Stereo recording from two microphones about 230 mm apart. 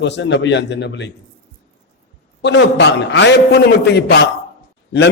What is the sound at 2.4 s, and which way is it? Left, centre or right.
A man's voice, left.